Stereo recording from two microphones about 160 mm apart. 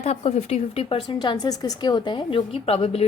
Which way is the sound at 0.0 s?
45° left (ahead or behind).